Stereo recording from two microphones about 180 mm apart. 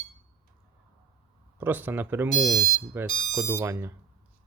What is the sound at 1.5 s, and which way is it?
Speech, 10° right (ahead or behind).